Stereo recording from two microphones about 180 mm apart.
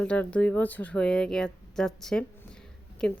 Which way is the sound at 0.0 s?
5° left (ahead or behind).